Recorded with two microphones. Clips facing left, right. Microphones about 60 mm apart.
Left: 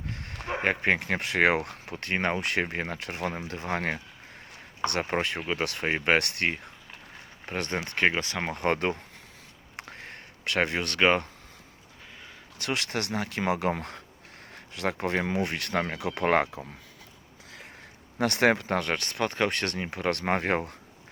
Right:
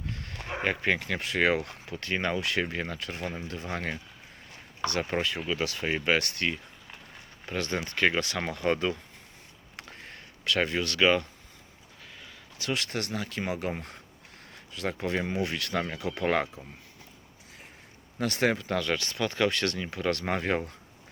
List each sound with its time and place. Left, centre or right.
0.1 s a sound: left
0.6 s speech: left
7.4 s speech: left
8.5 s speech: left
9.7 s a sound: left
12.5 s speech: left
16.0 s speech: left
18.2 s speech: left